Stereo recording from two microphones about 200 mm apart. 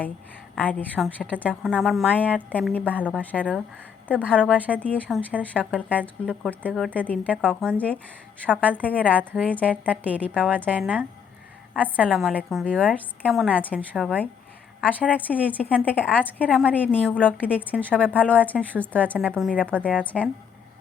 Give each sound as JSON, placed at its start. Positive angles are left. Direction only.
{"t": 0.5, "sound": "a woman's voice", "side_deg": 5}
{"t": 4.1, "sound": "a woman's voice", "side_deg": -5}
{"t": 4.4, "sound": "a woman's voice", "side_deg": 5}
{"t": 5.4, "sound": "a woman's voice", "side_deg": -10}
{"t": 6.2, "sound": "a woman's voice", "side_deg": 5}
{"t": 9.0, "sound": "a woman's voice", "side_deg": -5}
{"t": 9.4, "sound": "a woman's voice", "side_deg": 5}
{"t": 9.6, "sound": "a woman's voice", "side_deg": -5}
{"t": 10.2, "sound": "a woman's voice", "side_deg": 5}
{"t": 10.8, "sound": "a woman's voice", "side_deg": -5}
{"t": 15.3, "sound": "a woman's voice", "side_deg": 10}